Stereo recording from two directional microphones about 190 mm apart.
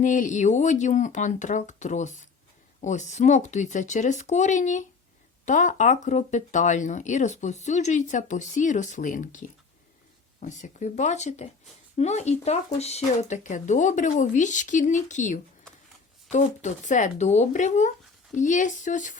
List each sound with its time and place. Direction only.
0.0 s speech: 40° left (ahead or behind)